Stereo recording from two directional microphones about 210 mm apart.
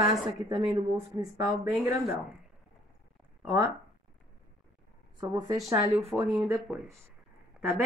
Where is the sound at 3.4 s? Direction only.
10° right (ahead or behind).